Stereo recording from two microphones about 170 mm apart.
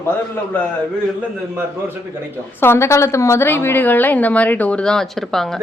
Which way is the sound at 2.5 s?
15° left (ahead or behind).